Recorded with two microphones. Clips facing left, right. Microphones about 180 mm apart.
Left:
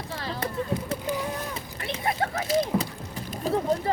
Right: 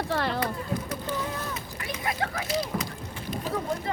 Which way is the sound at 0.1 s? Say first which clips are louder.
Right 6 dB; 65° right (ahead or behind).